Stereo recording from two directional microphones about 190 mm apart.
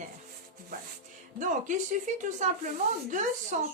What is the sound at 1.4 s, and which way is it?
Speech, 40° right (ahead or behind).